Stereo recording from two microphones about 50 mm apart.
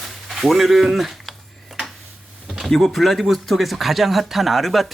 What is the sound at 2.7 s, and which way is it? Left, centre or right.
Speech, centre.